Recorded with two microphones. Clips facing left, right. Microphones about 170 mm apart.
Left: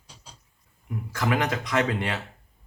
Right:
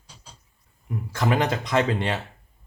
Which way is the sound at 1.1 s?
30° right (ahead or behind).